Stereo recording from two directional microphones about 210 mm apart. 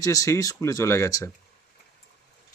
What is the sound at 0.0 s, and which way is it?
Speech, 15° left (ahead or behind).